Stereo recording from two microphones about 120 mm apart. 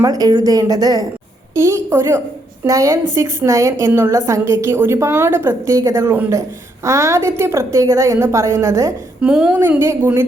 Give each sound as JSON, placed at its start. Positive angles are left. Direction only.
{"t": 0.0, "sound": "a woman's voice", "side_deg": -30}
{"t": 9.2, "sound": "speech", "side_deg": -10}